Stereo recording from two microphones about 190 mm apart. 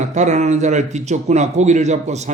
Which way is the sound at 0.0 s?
40° right (ahead or behind).